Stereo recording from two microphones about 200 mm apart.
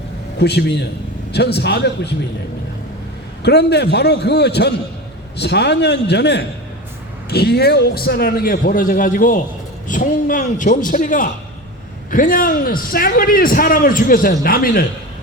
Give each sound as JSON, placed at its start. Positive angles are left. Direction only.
{"t": 0.3, "sound": "a man's voice", "side_deg": 55}
{"t": 3.4, "sound": "a man's voice", "side_deg": 55}